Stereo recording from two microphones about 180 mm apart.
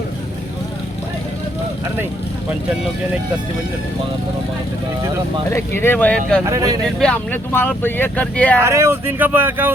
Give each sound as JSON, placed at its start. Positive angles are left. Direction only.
{"t": 5.5, "sound": "speech", "side_deg": 15}
{"t": 6.4, "sound": "speech", "side_deg": -20}
{"t": 7.0, "sound": "speech", "side_deg": 10}
{"t": 8.6, "sound": "speech", "side_deg": -15}